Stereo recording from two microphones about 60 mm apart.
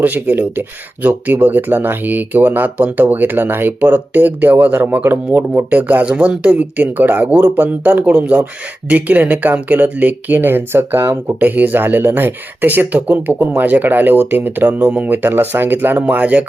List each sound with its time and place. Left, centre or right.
0.0 s speech: right
11.3 s speech: right
16.0 s speech: right